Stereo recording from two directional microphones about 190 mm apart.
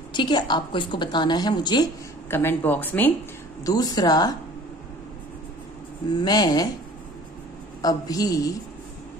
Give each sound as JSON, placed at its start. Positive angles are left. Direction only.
{"t": 0.1, "sound": "a woman's voice", "side_deg": 25}
{"t": 2.2, "sound": "speech", "side_deg": 10}
{"t": 3.6, "sound": "a woman's voice", "side_deg": 20}
{"t": 6.1, "sound": "a woman's voice", "side_deg": 20}
{"t": 7.8, "sound": "a woman's voice", "side_deg": 20}